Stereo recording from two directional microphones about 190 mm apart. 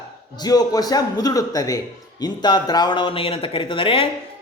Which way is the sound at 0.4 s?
20° left (ahead or behind).